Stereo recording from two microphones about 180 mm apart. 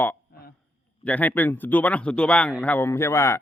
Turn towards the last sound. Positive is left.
turn(degrees=15)  # may be behind; listen again after turning